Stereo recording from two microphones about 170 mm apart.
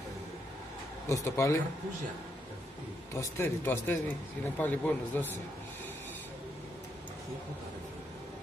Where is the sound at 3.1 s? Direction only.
15° left (ahead or behind).